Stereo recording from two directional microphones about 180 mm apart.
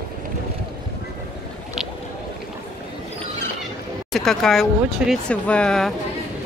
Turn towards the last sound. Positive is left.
turn(degrees=5)  # may be behind; listen again after turning